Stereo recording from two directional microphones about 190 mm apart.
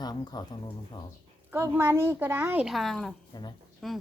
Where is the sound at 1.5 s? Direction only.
10° right (ahead or behind).